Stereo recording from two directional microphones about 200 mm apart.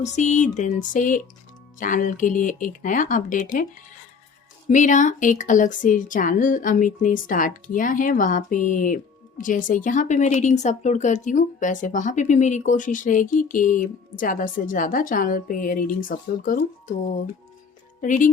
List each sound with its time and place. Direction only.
0.0 s a woman's voice: 35° left (ahead or behind)
4.7 s a woman's voice: 40° left (ahead or behind)
18.0 s a woman's voice: 40° left (ahead or behind)